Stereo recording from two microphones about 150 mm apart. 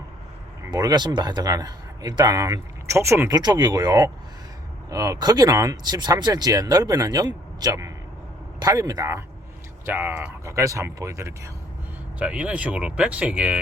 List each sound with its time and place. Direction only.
0.7 s speech: 25° right (ahead or behind)
12.2 s speech: 10° right (ahead or behind)